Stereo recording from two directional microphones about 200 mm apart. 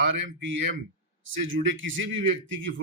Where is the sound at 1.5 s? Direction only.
75° right (ahead or behind).